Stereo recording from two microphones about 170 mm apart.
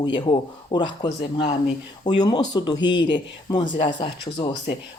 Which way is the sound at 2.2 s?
25° left (ahead or behind).